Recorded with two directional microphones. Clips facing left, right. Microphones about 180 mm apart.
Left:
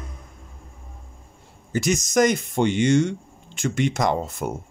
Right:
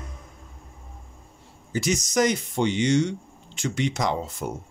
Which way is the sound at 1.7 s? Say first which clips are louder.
Left 3 dB; 50° left (ahead or behind).